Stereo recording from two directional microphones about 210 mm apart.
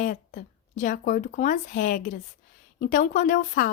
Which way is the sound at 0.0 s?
40° left (ahead or behind).